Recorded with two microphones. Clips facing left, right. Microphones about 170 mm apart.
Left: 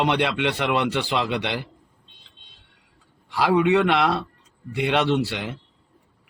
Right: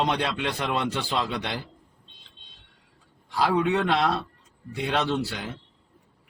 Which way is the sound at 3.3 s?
80° left.